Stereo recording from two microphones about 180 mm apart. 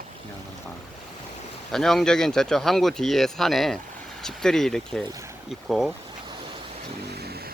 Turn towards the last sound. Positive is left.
turn(degrees=-60)  # may be behind; listen again after turning